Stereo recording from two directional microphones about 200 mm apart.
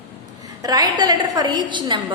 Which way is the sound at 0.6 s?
20° right (ahead or behind).